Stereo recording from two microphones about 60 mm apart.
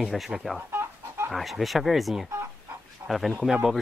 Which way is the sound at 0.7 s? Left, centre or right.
Right.